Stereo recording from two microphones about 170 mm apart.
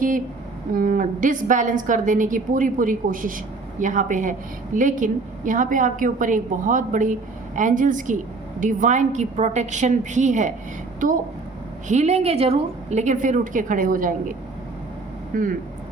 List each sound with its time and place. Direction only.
0.7 s a woman's voice: 55° right (ahead or behind)
11.9 s a woman's voice: 40° right (ahead or behind)
15.3 s speech: 55° right (ahead or behind)